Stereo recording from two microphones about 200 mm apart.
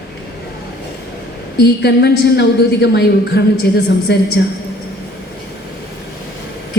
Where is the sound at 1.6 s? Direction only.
55° left (ahead or behind).